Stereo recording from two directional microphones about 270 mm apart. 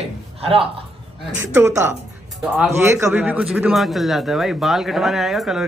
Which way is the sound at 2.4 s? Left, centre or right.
Centre.